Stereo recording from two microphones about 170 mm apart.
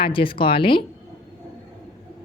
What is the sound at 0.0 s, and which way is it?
Speech, 30° left (ahead or behind).